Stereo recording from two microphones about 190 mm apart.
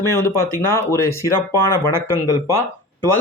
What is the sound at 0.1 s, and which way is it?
Speech, 15° left (ahead or behind).